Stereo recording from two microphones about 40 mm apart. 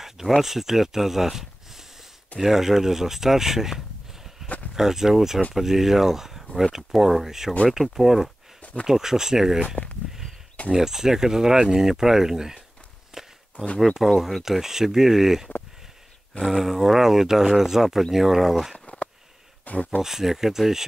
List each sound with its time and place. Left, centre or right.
0.4 s speech: centre
10.7 s speech: centre
14.0 s speech: centre
16.5 s speech: centre
19.6 s speech: left
20.0 s speech: centre